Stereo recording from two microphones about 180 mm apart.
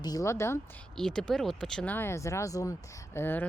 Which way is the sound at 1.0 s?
5° left (ahead or behind).